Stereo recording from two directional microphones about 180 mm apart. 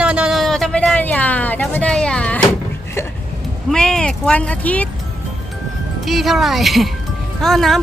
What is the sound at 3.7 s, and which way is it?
Speech, 5° left (ahead or behind).